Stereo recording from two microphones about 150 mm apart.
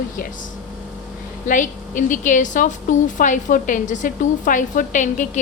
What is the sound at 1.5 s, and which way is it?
A woman's voice, 60° left (ahead or behind).